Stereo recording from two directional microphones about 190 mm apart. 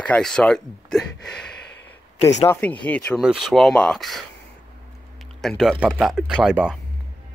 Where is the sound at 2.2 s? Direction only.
35° left (ahead or behind).